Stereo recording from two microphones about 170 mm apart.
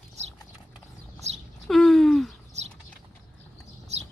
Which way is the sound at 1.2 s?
40° right (ahead or behind).